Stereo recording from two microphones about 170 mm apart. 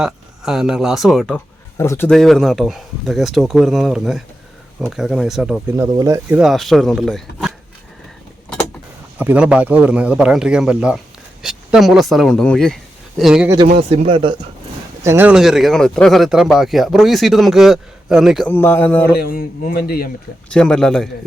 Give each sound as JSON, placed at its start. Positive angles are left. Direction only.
{"t": 0.0, "sound": "speech", "side_deg": -5}
{"t": 1.8, "sound": "speech", "side_deg": 15}
{"t": 2.1, "sound": "speech", "side_deg": 0}
{"t": 6.0, "sound": "speech", "side_deg": -20}
{"t": 6.4, "sound": "speech", "side_deg": 0}
{"t": 9.1, "sound": "a man's voice", "side_deg": -10}
{"t": 13.9, "sound": "speech", "side_deg": -35}
{"t": 15.0, "sound": "speech", "side_deg": -10}
{"t": 18.4, "sound": "speech", "side_deg": 10}
{"t": 19.1, "sound": "a man's voice", "side_deg": 60}
{"t": 20.5, "sound": "speech", "side_deg": 5}